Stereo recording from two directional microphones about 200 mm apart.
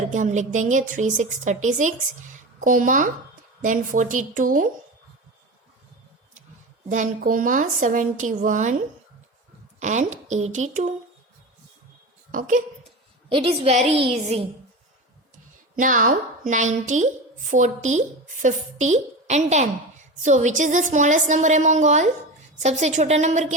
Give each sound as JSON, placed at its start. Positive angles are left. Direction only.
{"t": 0.1, "sound": "a woman's voice", "side_deg": -35}
{"t": 6.8, "sound": "a woman's voice", "side_deg": -40}
{"t": 9.8, "sound": "a woman's voice", "side_deg": -35}
{"t": 12.3, "sound": "a woman's voice", "side_deg": -40}
{"t": 13.3, "sound": "a woman's voice", "side_deg": -25}
{"t": 15.7, "sound": "a woman's voice", "side_deg": -40}